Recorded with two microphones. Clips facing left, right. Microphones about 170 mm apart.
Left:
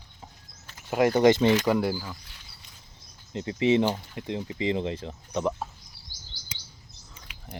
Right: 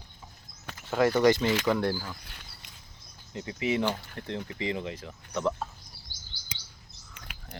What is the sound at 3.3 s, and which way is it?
Speech, 25° left (ahead or behind).